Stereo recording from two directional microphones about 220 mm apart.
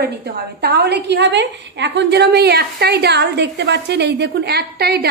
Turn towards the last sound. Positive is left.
turn(degrees=-45)  # may be behind; listen again after turning